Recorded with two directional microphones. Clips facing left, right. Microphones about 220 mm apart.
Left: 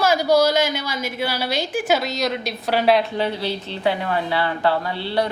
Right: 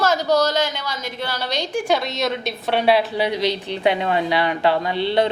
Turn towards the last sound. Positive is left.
turn(degrees=-20)  # may be behind; listen again after turning